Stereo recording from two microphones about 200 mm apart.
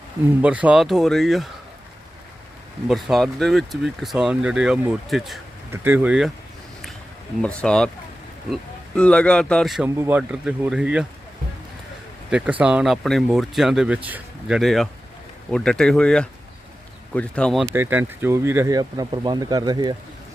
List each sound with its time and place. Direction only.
0.4 s speech: 5° right (ahead or behind)
2.8 s speech: centre (ahead or behind)
7.4 s speech: 5° left (ahead or behind)
9.0 s speech: 5° left (ahead or behind)
12.3 s speech: 5° right (ahead or behind)
17.7 s speech: 10° right (ahead or behind)